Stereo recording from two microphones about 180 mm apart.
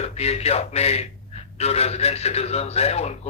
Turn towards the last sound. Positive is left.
turn(degrees=35)  # may be behind; listen again after turning